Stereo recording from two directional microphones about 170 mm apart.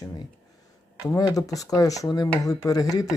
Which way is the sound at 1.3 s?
20° left (ahead or behind).